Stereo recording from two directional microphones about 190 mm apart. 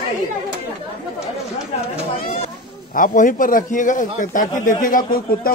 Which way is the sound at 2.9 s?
45° left (ahead or behind).